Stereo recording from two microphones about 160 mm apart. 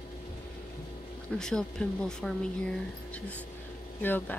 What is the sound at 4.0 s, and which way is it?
Speech, 10° left (ahead or behind).